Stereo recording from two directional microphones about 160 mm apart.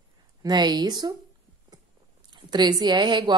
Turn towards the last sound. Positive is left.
turn(degrees=-30)  # may be behind; listen again after turning